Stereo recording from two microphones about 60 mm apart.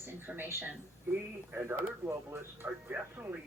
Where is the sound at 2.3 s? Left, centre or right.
Right.